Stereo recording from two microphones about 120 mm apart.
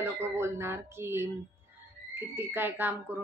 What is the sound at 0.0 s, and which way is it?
Speech, 20° right (ahead or behind).